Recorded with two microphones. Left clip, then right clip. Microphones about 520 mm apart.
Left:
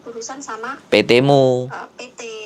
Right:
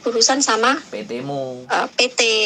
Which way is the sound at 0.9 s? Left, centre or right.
Left.